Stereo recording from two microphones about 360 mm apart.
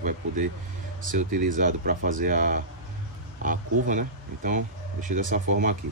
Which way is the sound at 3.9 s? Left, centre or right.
Right.